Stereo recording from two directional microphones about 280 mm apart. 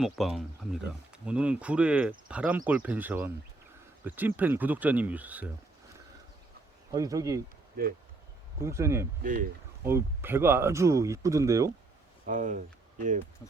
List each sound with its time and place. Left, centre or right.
0.0 s speech: centre
6.9 s speech: centre
8.6 s speech: centre
9.2 s speech: right
9.8 s speech: centre
12.2 s speech: right